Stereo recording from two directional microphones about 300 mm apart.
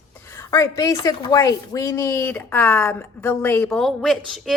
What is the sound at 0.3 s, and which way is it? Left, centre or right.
A woman's voice, centre.